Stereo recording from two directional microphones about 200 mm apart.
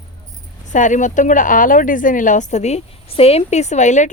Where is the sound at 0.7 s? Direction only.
40° left (ahead or behind).